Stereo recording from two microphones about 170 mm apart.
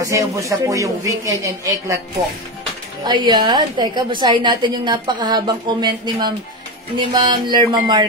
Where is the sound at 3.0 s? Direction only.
25° right (ahead or behind).